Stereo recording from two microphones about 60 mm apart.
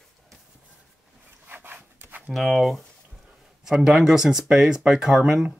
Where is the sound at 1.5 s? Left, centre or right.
Right.